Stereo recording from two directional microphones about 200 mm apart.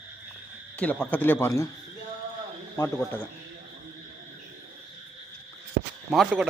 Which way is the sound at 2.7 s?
10° left (ahead or behind).